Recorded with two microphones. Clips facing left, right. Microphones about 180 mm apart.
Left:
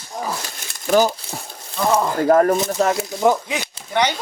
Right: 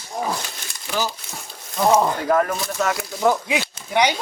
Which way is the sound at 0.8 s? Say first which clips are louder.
Left 10 dB; 45° left (ahead or behind).